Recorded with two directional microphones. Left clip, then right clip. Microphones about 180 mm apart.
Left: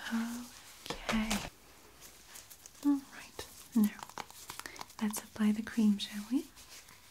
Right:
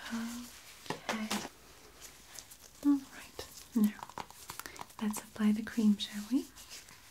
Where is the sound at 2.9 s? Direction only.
20° left (ahead or behind).